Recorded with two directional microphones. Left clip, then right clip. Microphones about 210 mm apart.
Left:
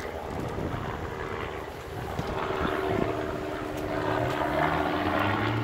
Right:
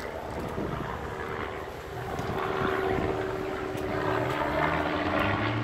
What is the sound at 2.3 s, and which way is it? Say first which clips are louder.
Vehicle: right 1 dB; 25° right (ahead or behind).